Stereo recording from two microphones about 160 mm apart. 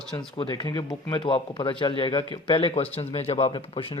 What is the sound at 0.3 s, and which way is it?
A man's voice, 25° left (ahead or behind).